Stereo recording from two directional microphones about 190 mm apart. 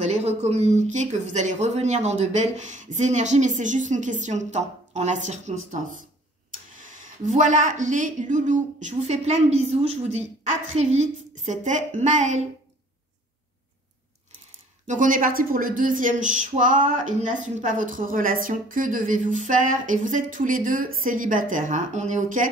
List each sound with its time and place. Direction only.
0.0 s speech: 35° right (ahead or behind)
6.8 s speech: 40° right (ahead or behind)
14.9 s a woman's voice: 45° right (ahead or behind)